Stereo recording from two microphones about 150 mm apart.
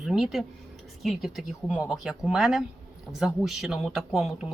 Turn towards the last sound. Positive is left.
turn(degrees=-5)  # may be behind; listen again after turning